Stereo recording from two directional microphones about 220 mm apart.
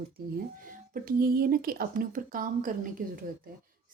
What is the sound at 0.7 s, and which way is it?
Speech, 40° right (ahead or behind).